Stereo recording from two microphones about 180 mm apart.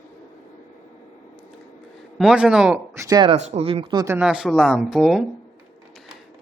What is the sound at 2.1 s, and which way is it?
Speech, 5° right (ahead or behind).